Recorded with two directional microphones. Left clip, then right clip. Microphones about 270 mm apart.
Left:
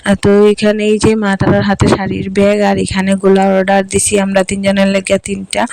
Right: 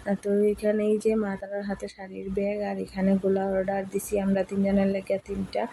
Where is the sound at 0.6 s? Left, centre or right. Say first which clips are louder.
Left 13 dB; left.